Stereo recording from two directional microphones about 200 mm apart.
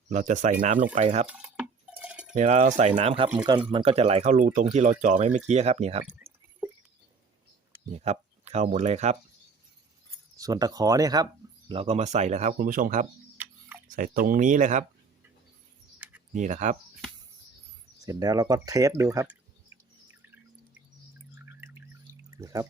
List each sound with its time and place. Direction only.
0.1 s speech: 40° right (ahead or behind)
1.3 s cowbell: 5° right (ahead or behind)
2.3 s speech: 35° right (ahead or behind)
7.9 s speech: 35° right (ahead or behind)
10.3 s speech: 20° right (ahead or behind)
11.7 s speech: 30° right (ahead or behind)
13.3 s tick-tock: 10° right (ahead or behind)
13.9 s speech: 40° right (ahead or behind)
16.3 s speech: 35° right (ahead or behind)
18.0 s speech: 20° right (ahead or behind)
21.3 s a sound: 10° right (ahead or behind)
22.4 s speech: 15° right (ahead or behind)